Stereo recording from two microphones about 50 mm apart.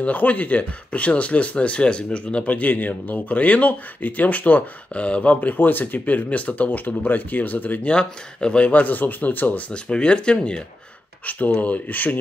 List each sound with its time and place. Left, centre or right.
0.0 s speech: left
7.9 s speech: centre
8.8 s speech: left
9.7 s speech: centre
11.2 s speech: left